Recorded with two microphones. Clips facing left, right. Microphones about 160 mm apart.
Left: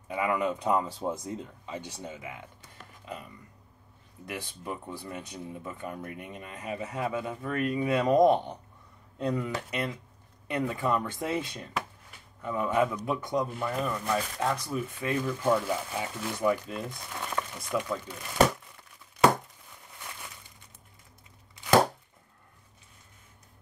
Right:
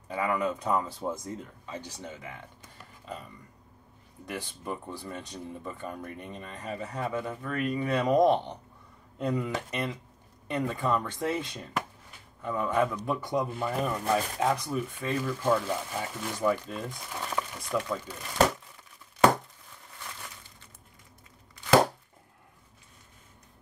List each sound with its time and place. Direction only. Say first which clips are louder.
0.1 s speech: left 1 dB; 15° left (ahead or behind)
2.0 s speech: left 1 dB; 10° left (ahead or behind)
4.3 s speech: right 1 dB; 5° left (ahead or behind); by 14.6 s 15° right (ahead or behind)
14.7 s speech: even; centre (ahead or behind)